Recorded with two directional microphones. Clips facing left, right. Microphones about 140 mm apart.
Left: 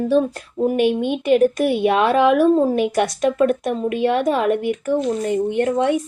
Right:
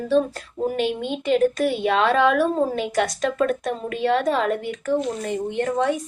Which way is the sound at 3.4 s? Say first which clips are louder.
Left 3 dB; 20° left (ahead or behind).